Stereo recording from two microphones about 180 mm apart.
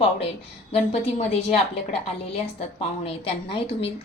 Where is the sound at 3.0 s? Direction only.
30° left (ahead or behind).